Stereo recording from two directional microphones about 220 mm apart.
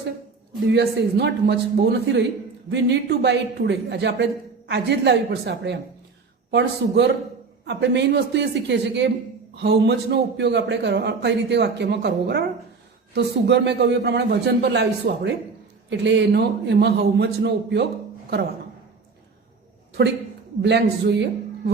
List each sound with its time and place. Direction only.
0.7 s a man's voice: 50° right (ahead or behind)
20.6 s a man's voice: 50° right (ahead or behind)